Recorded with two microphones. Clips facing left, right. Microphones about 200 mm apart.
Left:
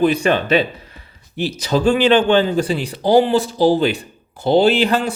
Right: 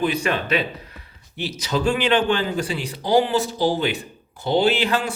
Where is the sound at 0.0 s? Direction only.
30° left (ahead or behind).